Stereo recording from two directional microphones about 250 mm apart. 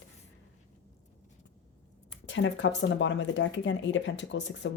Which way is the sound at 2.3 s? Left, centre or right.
Left.